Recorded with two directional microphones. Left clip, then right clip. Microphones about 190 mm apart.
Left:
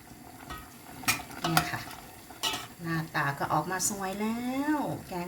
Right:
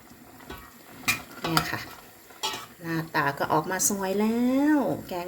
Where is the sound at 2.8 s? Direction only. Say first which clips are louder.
Right 5 dB; 40° right (ahead or behind).